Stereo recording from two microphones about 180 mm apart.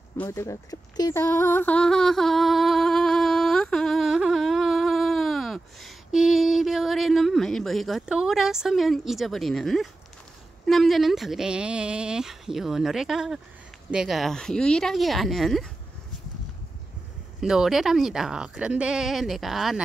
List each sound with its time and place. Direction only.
0.2 s a sound: 15° left (ahead or behind)
10.7 s speech: centre (ahead or behind)
17.4 s speech: centre (ahead or behind)